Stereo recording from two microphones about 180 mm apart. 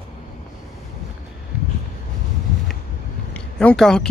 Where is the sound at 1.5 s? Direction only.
5° right (ahead or behind).